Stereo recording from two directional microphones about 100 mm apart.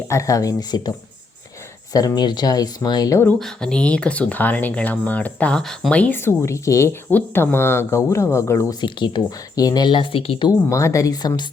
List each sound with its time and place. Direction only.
0.1 s speech: 30° left (ahead or behind)
3.3 s speech: 5° left (ahead or behind)
6.1 s speech: 25° left (ahead or behind)
7.1 s speech: 20° left (ahead or behind)
8.8 s speech: 50° left (ahead or behind)
10.5 s speech: 30° left (ahead or behind)